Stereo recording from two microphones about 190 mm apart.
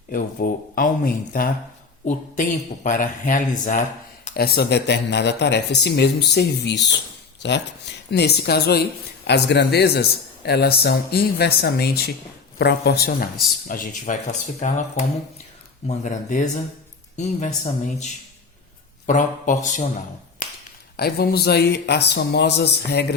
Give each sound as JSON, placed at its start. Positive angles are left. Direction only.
{"t": 0.1, "sound": "speech", "side_deg": 50}
{"t": 4.4, "sound": "a man's voice", "side_deg": 60}
{"t": 8.1, "sound": "a man's voice", "side_deg": 60}
{"t": 13.7, "sound": "speech", "side_deg": 45}
{"t": 20.9, "sound": "a man's voice", "side_deg": 55}